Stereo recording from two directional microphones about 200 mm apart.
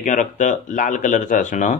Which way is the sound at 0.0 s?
40° left (ahead or behind).